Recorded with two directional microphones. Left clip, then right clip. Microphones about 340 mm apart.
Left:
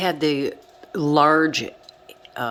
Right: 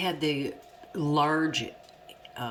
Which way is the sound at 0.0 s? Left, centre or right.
Centre.